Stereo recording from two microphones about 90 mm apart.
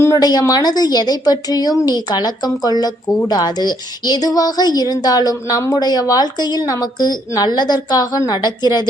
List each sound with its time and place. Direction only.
0.2 s a woman's voice: 45° left (ahead or behind)